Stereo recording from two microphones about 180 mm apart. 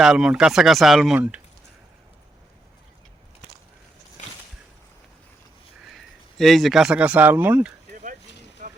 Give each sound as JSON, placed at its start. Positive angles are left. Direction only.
{"t": 0.0, "sound": "speech", "side_deg": -5}
{"t": 5.9, "sound": "speech", "side_deg": 0}
{"t": 8.6, "sound": "a sound", "side_deg": -50}